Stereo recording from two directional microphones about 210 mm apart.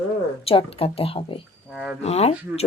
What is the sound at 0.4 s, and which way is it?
Speech, 25° left (ahead or behind).